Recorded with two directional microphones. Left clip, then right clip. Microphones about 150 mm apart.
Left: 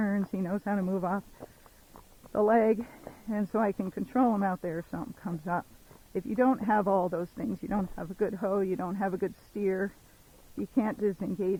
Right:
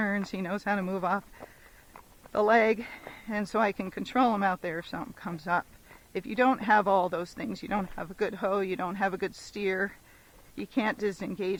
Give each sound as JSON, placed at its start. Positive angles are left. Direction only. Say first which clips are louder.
{"t": 0.0, "sound": "speech", "louder": "right 2 dB", "side_deg": -30}